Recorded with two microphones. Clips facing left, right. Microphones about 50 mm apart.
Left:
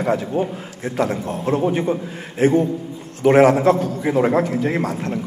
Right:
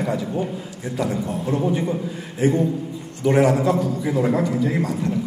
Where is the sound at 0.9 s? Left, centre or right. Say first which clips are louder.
Left 2 dB; left.